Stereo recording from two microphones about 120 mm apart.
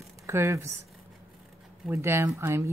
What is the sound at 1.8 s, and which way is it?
Speech, 20° right (ahead or behind).